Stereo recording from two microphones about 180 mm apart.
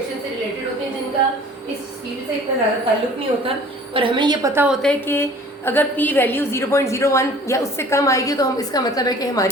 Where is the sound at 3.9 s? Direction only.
30° right (ahead or behind).